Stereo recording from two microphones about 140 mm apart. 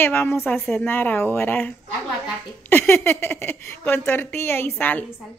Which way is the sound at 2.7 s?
15° left (ahead or behind).